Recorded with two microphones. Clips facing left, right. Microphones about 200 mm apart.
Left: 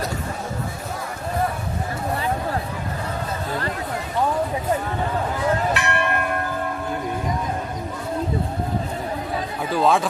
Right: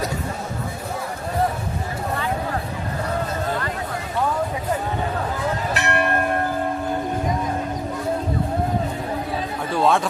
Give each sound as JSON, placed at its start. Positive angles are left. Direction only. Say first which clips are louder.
{"t": 5.7, "sound": "church bell", "louder": "right 1 dB", "side_deg": -35}
{"t": 9.7, "sound": "a man's voice", "louder": "even", "side_deg": 0}